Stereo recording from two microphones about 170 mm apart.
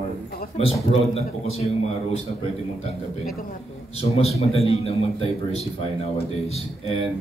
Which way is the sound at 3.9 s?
35° left (ahead or behind).